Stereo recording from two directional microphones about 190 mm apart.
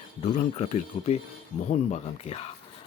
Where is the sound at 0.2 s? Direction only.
35° left (ahead or behind).